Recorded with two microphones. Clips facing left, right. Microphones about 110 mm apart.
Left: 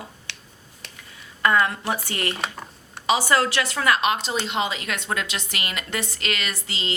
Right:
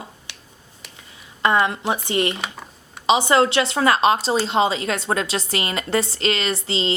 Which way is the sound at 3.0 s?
20° right (ahead or behind).